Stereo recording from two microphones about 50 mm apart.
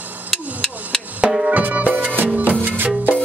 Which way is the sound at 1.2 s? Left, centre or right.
Centre.